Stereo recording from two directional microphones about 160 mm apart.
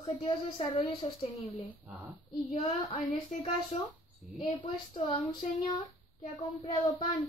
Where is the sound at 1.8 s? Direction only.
10° right (ahead or behind).